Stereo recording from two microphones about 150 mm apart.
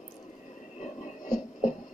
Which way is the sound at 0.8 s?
60° left (ahead or behind).